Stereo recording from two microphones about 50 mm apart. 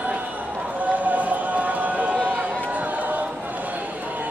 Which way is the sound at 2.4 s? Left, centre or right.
Right.